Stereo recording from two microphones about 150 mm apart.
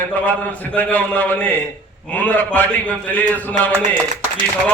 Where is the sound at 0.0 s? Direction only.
10° left (ahead or behind).